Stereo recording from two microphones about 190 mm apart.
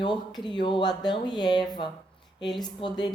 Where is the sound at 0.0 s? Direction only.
25° left (ahead or behind).